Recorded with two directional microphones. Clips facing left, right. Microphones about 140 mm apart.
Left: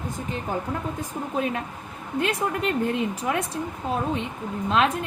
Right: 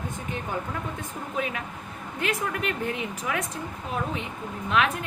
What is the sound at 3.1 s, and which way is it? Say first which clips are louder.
Speech: left 4 dB; 35° left (ahead or behind).